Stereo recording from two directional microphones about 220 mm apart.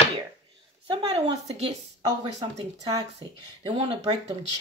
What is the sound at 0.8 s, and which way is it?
Speech, 25° right (ahead or behind).